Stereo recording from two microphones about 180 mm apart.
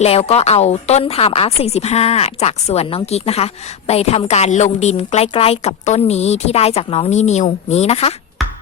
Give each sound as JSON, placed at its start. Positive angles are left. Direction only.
{"t": 0.0, "sound": "speech", "side_deg": 35}